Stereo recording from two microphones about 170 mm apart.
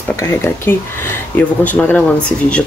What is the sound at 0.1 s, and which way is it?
Speech, 15° left (ahead or behind).